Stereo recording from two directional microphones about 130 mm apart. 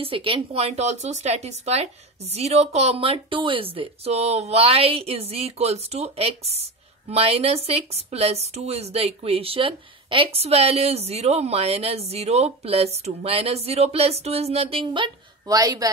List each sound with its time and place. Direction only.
0.0 s speech: 40° right (ahead or behind)
14.9 s a woman's voice: 30° right (ahead or behind)